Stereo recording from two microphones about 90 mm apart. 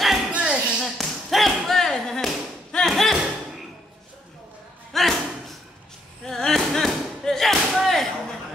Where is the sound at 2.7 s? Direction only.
5° left (ahead or behind).